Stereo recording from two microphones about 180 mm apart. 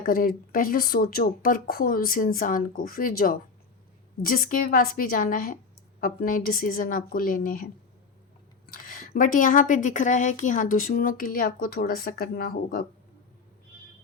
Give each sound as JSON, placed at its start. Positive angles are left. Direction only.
{"t": 0.0, "sound": "speech", "side_deg": 55}